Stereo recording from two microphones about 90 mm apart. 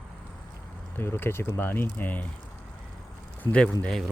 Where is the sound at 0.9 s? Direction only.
25° left (ahead or behind).